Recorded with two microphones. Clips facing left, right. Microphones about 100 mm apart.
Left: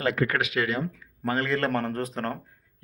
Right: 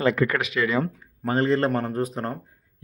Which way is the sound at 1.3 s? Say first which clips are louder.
Right 4 dB; 25° right (ahead or behind).